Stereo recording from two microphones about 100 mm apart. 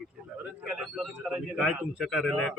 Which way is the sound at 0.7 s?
5° right (ahead or behind).